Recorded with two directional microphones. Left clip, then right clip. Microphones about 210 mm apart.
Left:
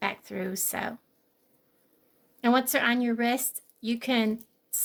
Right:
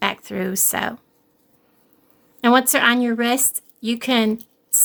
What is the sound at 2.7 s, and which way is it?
A woman's voice, 20° right (ahead or behind).